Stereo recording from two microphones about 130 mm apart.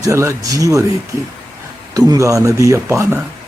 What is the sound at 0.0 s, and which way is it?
Speech, 25° right (ahead or behind).